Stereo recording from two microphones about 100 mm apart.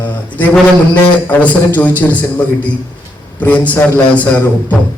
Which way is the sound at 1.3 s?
15° left (ahead or behind).